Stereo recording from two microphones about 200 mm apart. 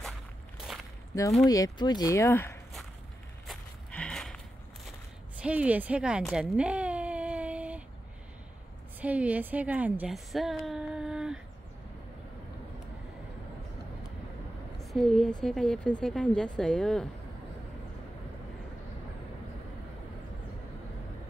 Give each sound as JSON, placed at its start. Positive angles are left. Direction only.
{"t": 1.5, "sound": "speech", "side_deg": 20}
{"t": 3.4, "sound": "livestock", "side_deg": 5}
{"t": 5.4, "sound": "a sound", "side_deg": -5}
{"t": 9.0, "sound": "a woman's voice", "side_deg": -5}
{"t": 14.8, "sound": "a woman's voice", "side_deg": 0}